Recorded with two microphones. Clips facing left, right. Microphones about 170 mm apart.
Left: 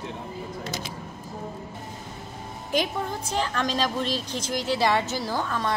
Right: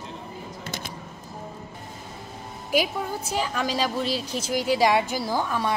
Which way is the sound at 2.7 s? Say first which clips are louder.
Right 2 dB; 10° right (ahead or behind).